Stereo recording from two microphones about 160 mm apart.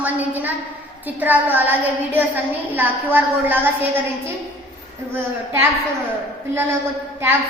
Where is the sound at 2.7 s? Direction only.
10° right (ahead or behind).